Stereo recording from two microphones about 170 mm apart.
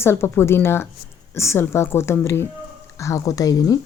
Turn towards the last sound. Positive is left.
turn(degrees=20)  # may be behind; listen again after turning